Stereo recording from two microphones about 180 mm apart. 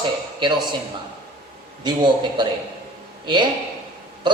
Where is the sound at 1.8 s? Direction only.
25° right (ahead or behind).